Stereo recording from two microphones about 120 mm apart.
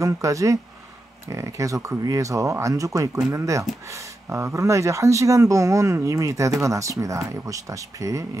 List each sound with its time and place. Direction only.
0.0 s speech: 25° right (ahead or behind)